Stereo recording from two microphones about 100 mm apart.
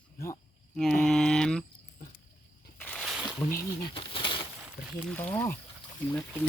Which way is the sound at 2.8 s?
15° left (ahead or behind).